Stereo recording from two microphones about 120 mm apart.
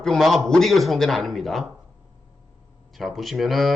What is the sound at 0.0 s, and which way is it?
A man's voice, centre (ahead or behind).